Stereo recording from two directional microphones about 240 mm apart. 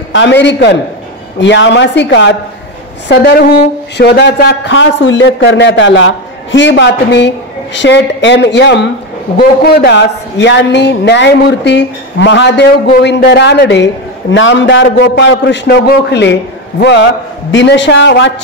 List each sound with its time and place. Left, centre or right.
0.1 s speech: left